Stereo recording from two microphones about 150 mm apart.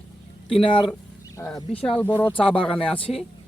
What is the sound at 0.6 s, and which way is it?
Speech, 35° left (ahead or behind).